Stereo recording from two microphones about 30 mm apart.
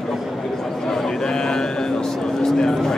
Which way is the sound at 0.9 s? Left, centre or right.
Centre.